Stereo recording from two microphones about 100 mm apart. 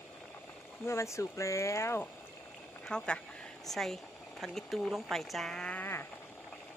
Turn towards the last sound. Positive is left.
turn(degrees=20)  # may be behind; listen again after turning